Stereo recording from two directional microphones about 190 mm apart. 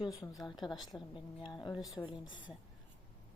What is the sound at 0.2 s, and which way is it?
Speech, 20° left (ahead or behind).